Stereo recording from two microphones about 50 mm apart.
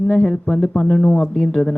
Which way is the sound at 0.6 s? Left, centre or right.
Centre.